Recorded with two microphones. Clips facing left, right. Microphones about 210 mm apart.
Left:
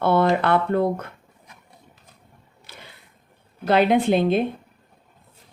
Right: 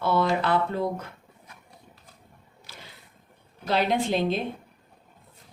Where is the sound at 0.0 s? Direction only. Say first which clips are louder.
Left 5 dB; 55° left (ahead or behind).